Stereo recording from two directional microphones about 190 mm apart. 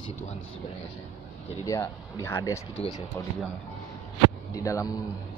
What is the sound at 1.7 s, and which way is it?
Speech, 15° left (ahead or behind).